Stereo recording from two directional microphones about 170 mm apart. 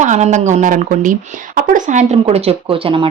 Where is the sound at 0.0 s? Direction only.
45° right (ahead or behind).